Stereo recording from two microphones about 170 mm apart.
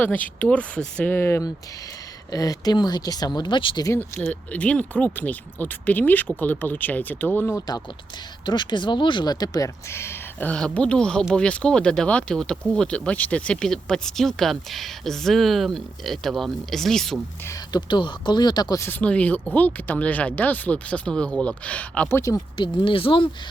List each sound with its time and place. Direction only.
0.3 s speech: 10° left (ahead or behind)
8.4 s speech: 25° left (ahead or behind); by 17.2 s centre (ahead or behind)
17.4 s speech: 20° left (ahead or behind)
22.5 s speech: 30° left (ahead or behind)